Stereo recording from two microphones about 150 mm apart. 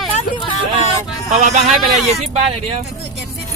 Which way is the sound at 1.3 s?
50° right (ahead or behind).